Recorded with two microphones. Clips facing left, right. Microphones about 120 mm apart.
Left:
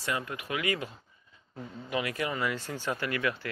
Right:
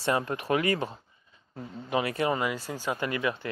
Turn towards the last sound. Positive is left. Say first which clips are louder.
# right 2 dB
turn(degrees=-20)  # may be behind; listen again after turning